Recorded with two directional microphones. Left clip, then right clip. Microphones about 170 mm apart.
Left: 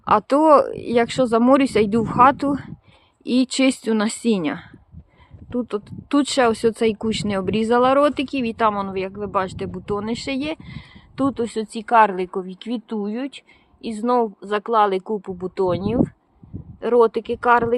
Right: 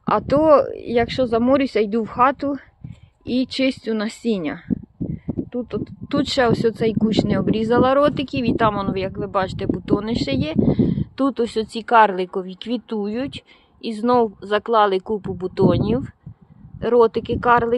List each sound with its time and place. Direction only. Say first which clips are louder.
0.0 s speech: left 1 dB; 15° left (ahead or behind)